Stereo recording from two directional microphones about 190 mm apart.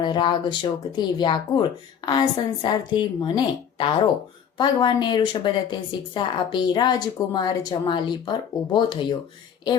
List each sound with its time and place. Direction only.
0.0 s a woman's voice: 25° left (ahead or behind)